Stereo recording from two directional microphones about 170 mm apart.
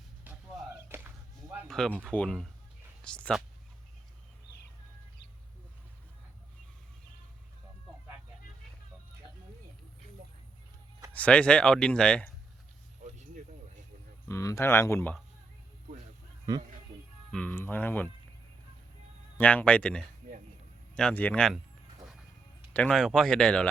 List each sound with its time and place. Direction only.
0.3 s music: 10° right (ahead or behind)
1.6 s a sound: 5° left (ahead or behind)
2.0 s speech: 5° left (ahead or behind)
11.1 s speech: 10° left (ahead or behind)
13.1 s a sound: 45° right (ahead or behind)
14.3 s speech: 15° left (ahead or behind)
16.5 s a man's voice: 20° right (ahead or behind)
17.3 s speech: 10° left (ahead or behind)
19.4 s speech: 10° left (ahead or behind)
22.7 s speech: 5° left (ahead or behind)